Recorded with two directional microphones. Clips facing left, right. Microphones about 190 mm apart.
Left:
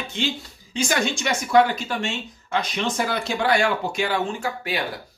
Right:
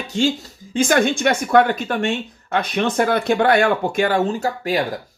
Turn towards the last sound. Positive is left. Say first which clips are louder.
# right 6 dB
turn(degrees=-40)  # may be behind; listen again after turning